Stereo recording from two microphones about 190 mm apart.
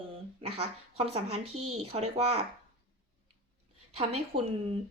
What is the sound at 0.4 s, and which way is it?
Speech, 30° right (ahead or behind).